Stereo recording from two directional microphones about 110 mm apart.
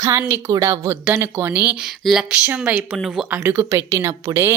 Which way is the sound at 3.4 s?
25° right (ahead or behind).